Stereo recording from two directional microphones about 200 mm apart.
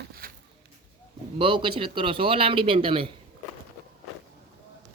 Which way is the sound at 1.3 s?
25° right (ahead or behind).